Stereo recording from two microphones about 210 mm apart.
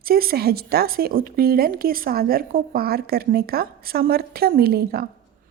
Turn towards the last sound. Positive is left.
turn(degrees=-45)  # may be behind; listen again after turning